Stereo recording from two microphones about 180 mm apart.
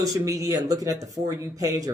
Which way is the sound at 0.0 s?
20° right (ahead or behind).